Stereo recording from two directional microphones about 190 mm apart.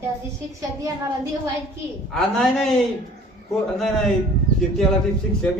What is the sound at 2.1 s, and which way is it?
Speech, centre (ahead or behind).